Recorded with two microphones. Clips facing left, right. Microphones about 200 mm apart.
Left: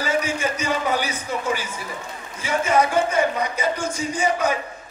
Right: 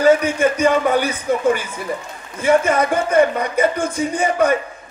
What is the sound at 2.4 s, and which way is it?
A man's voice, 55° right (ahead or behind).